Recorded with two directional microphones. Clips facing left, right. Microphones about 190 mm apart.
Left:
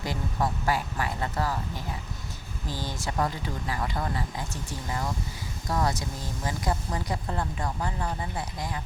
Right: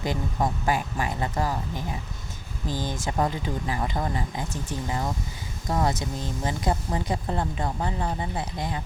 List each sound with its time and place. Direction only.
0.0 s speech: 20° right (ahead or behind)